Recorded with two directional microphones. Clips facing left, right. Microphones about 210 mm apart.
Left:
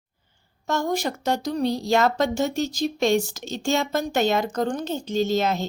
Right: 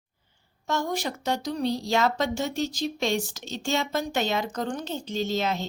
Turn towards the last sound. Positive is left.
turn(degrees=45)  # may be behind; listen again after turning